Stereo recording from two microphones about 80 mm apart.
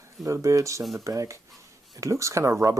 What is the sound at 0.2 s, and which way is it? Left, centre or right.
Speech, right.